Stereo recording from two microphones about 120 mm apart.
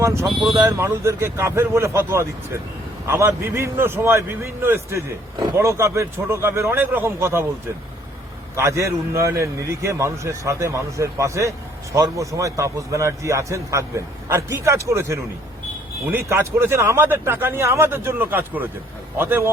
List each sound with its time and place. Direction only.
0.0 s a man's voice: 25° right (ahead or behind)
8.5 s a man's voice: 25° right (ahead or behind)